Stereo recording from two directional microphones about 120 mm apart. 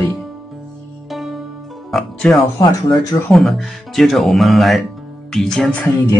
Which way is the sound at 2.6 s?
30° left (ahead or behind).